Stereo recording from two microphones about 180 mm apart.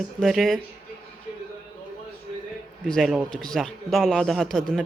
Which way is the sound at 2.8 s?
Centre (ahead or behind).